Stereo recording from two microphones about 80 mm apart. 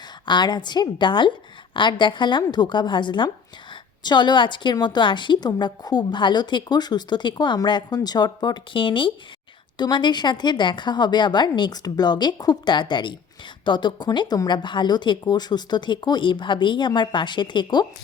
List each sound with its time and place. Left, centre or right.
0.3 s a woman's voice: left
4.0 s a woman's voice: left
9.7 s a woman's voice: left